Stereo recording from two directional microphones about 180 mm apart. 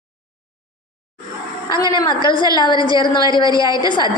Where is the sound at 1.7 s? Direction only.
25° left (ahead or behind).